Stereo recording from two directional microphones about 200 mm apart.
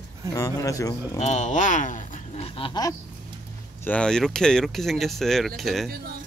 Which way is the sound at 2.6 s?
20° left (ahead or behind).